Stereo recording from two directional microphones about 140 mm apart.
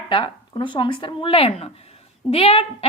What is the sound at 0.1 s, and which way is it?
A woman's voice, 35° left (ahead or behind).